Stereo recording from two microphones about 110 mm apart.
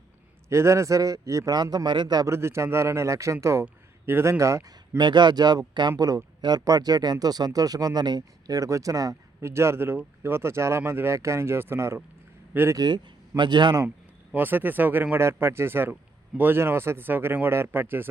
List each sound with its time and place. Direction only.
0.4 s speech: 25° right (ahead or behind); by 2.2 s 40° right (ahead or behind)
2.2 s speech: 25° right (ahead or behind)
4.9 s speech: 45° right (ahead or behind); by 12.8 s 25° right (ahead or behind)
12.8 s speech: 40° right (ahead or behind)
14.3 s speech: 15° right (ahead or behind)